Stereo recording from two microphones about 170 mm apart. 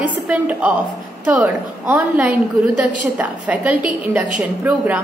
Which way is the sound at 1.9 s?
15° right (ahead or behind).